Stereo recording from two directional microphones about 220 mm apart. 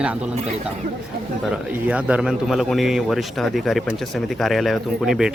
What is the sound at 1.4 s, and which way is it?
Speech, 5° right (ahead or behind).